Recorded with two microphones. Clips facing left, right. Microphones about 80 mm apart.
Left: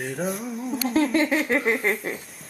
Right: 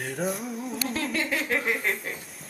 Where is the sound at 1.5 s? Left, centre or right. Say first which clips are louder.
Left 5 dB; left.